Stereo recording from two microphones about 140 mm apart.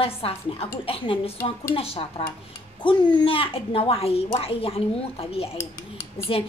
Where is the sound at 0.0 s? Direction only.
45° left (ahead or behind).